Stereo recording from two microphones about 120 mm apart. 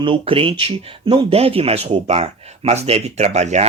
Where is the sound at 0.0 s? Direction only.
45° right (ahead or behind).